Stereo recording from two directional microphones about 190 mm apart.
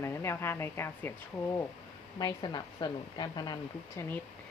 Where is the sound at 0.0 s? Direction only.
15° left (ahead or behind).